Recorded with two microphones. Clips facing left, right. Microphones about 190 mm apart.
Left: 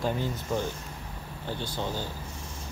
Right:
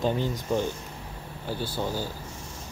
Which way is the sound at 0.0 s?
15° right (ahead or behind).